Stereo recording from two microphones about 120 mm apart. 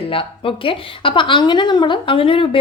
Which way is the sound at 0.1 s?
50° left (ahead or behind).